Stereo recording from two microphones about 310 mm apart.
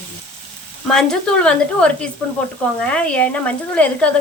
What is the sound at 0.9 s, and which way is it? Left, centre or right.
Speech, centre.